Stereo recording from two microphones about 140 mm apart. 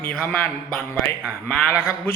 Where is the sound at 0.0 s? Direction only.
10° left (ahead or behind).